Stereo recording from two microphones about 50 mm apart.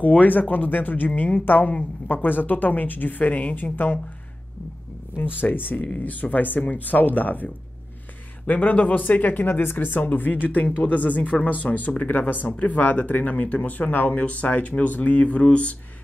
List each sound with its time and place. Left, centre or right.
0.0 s speech: left
5.4 s speech: left